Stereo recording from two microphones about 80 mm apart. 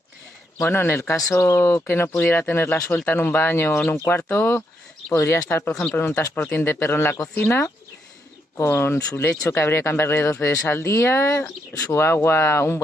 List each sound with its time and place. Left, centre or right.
0.6 s speech: left
5.7 s speech: centre
5.9 s speech: left
10.7 s speech: left